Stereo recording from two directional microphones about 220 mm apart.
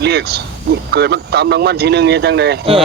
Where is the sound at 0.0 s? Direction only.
50° right (ahead or behind).